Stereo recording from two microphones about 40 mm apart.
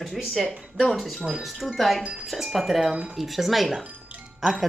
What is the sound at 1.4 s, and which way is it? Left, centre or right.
Speech, centre.